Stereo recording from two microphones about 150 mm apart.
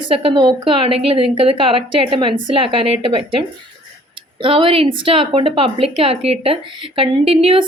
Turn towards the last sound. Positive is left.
turn(degrees=-40)  # may be behind; listen again after turning